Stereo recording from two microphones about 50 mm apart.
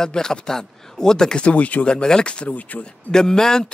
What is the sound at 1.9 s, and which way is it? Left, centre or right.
Speech, centre.